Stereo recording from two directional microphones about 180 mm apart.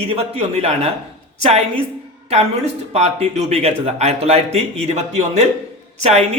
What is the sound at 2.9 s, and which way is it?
Speech, 35° right (ahead or behind).